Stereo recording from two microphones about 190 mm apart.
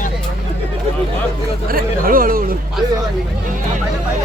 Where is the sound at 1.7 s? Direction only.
50° right (ahead or behind).